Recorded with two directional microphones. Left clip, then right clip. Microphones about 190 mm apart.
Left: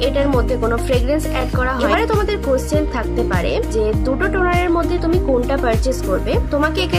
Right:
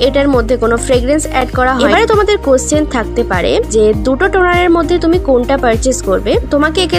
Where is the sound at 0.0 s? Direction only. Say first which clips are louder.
Right 7 dB; 40° right (ahead or behind).